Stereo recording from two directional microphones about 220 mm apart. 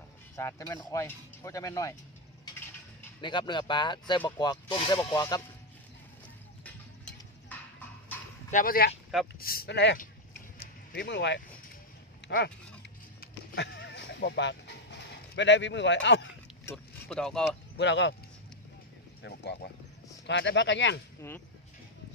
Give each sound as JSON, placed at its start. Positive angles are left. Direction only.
{"t": 0.4, "sound": "speech", "side_deg": 15}
{"t": 3.2, "sound": "speech", "side_deg": 20}
{"t": 6.6, "sound": "a sound", "side_deg": 5}
{"t": 8.5, "sound": "speech", "side_deg": 40}
{"t": 10.6, "sound": "a sound", "side_deg": 45}
{"t": 13.2, "sound": "horse", "side_deg": 55}
{"t": 16.6, "sound": "speech", "side_deg": 5}
{"t": 17.7, "sound": "speech", "side_deg": 55}
{"t": 19.2, "sound": "speech", "side_deg": 50}
{"t": 21.2, "sound": "speech", "side_deg": 10}